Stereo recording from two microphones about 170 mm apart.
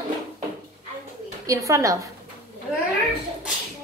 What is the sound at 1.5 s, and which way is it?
Speech, 20° right (ahead or behind).